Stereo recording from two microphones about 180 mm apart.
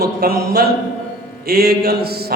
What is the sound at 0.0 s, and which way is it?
Mantra, 55° right (ahead or behind).